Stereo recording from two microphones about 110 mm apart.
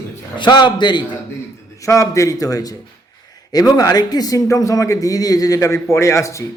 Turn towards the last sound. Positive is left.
turn(degrees=25)  # may be behind; listen again after turning